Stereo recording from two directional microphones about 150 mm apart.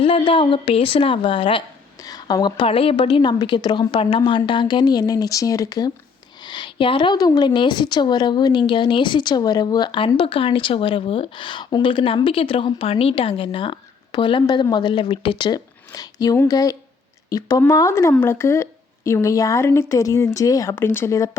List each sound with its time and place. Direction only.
0.0 s a woman's voice: 35° left (ahead or behind); by 21.2 s 15° left (ahead or behind)